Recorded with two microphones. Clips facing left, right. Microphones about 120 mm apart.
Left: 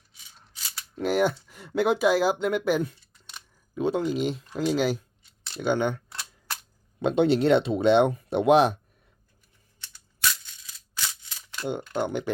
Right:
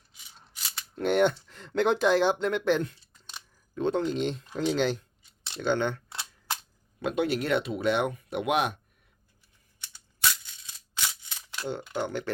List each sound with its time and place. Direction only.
0.9 s speech: centre (ahead or behind)
6.1 s camera: 25° right (ahead or behind)
7.0 s speech: 25° left (ahead or behind)
10.9 s a sound: 20° right (ahead or behind)
11.9 s speech: 15° left (ahead or behind)